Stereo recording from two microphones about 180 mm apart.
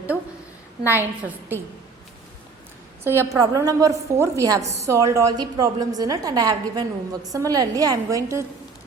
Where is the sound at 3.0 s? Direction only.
15° right (ahead or behind).